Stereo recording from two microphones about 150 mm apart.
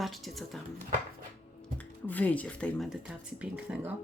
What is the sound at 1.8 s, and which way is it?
Speech, 10° left (ahead or behind).